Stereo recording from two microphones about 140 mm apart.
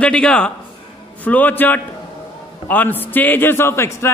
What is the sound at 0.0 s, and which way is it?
A man's voice, 5° left (ahead or behind).